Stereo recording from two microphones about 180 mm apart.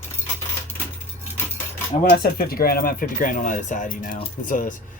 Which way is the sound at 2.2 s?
55° left (ahead or behind).